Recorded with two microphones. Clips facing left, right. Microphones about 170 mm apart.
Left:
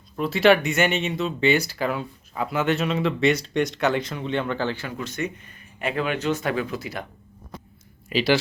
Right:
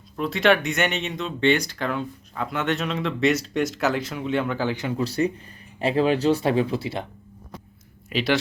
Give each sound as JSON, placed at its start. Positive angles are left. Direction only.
{"t": 0.2, "sound": "speech", "side_deg": 0}
{"t": 4.9, "sound": "speech", "side_deg": -35}
{"t": 8.1, "sound": "speech", "side_deg": 0}